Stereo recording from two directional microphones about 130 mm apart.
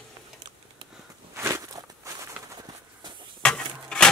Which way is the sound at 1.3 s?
20° right (ahead or behind).